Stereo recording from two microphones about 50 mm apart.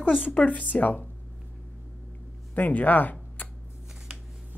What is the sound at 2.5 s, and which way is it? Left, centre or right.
Speech, left.